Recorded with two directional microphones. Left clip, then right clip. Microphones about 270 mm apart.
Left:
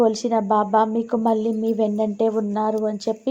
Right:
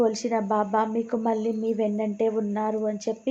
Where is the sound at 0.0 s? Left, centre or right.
Centre.